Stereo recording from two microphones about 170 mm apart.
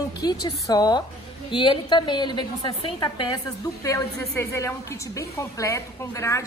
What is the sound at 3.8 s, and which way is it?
A woman's voice, 20° left (ahead or behind).